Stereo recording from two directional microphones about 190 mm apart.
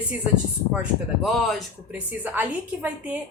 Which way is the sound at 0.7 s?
Centre (ahead or behind).